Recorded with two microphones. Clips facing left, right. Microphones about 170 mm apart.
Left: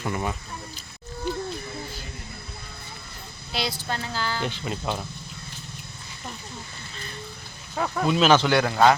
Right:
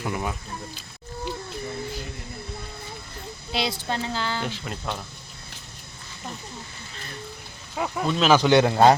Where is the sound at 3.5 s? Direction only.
25° right (ahead or behind).